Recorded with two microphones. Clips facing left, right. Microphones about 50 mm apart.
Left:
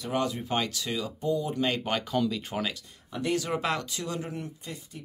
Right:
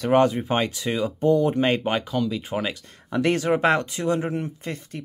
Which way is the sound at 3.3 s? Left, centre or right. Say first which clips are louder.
Right 8 dB; right.